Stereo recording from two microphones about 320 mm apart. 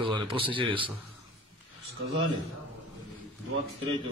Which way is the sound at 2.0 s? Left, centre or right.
Right.